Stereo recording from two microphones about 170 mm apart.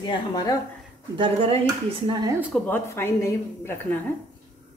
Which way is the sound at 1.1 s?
30° right (ahead or behind).